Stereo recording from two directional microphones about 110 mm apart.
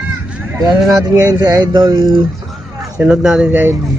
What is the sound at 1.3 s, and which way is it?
Speech, 35° right (ahead or behind).